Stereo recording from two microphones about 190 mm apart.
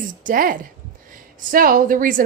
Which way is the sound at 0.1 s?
45° right (ahead or behind).